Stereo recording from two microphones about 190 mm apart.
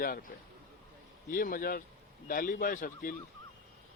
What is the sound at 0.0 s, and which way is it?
Speech, 45° left (ahead or behind).